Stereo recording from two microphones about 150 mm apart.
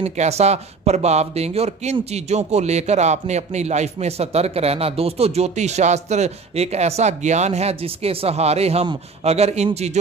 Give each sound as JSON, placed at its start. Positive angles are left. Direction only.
{"t": 0.0, "sound": "speech", "side_deg": -45}